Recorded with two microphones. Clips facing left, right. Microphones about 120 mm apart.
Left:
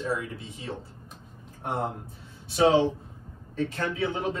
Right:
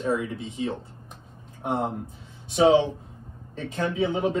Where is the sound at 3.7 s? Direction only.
20° right (ahead or behind).